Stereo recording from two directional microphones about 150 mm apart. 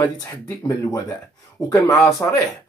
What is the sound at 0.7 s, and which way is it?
Speech, 20° left (ahead or behind).